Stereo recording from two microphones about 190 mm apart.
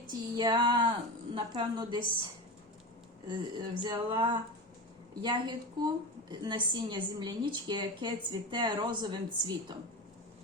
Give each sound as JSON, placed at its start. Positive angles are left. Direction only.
{"t": 0.1, "sound": "a woman's voice", "side_deg": -20}
{"t": 3.2, "sound": "a woman's voice", "side_deg": -25}